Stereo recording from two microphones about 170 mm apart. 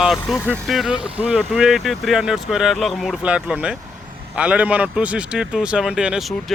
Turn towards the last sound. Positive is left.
turn(degrees=-5)  # may be behind; listen again after turning